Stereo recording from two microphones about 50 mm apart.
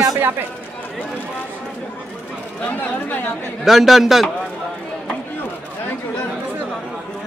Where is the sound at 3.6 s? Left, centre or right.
Centre.